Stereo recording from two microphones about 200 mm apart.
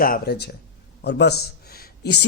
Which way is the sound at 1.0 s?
55° left (ahead or behind).